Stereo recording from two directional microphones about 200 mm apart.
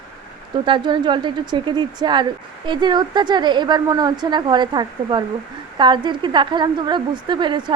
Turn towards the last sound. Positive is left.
turn(degrees=-25)  # may be behind; listen again after turning